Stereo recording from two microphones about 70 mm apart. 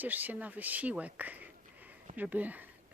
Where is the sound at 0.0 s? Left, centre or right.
Right.